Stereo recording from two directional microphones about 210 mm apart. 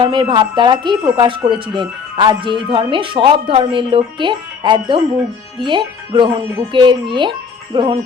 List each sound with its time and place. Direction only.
0.0 s speech: 20° right (ahead or behind)